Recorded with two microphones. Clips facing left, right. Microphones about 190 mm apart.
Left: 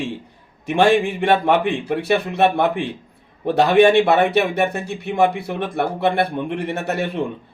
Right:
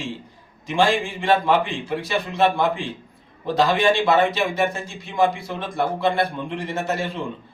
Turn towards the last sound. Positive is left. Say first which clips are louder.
# left 2 dB
turn(degrees=60)  # may be behind; listen again after turning